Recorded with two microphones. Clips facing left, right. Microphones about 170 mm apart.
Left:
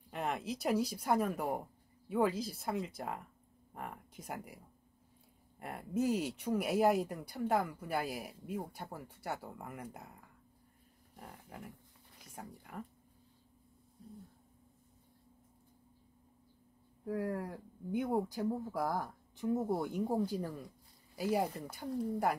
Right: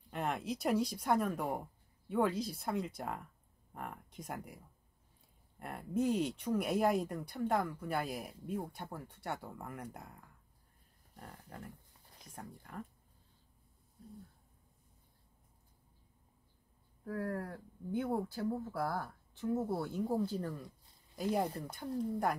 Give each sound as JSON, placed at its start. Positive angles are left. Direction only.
{"t": 0.1, "sound": "speech", "side_deg": 0}
{"t": 5.6, "sound": "speech", "side_deg": 0}
{"t": 11.1, "sound": "speech", "side_deg": 5}
{"t": 17.0, "sound": "speech", "side_deg": 15}